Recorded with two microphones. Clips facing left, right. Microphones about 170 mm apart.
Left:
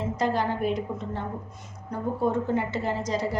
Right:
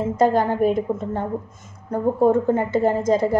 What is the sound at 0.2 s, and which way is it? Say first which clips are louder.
A woman's voice: right 9 dB; 50° right (ahead or behind).